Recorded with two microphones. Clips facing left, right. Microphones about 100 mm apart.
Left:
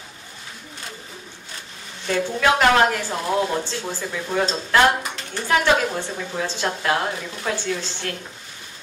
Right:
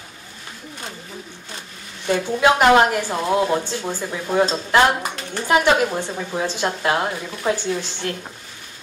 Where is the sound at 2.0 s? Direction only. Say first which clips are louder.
Right 3 dB; 15° right (ahead or behind).